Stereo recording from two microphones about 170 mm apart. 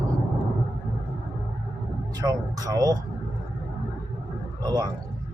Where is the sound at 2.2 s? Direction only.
20° right (ahead or behind).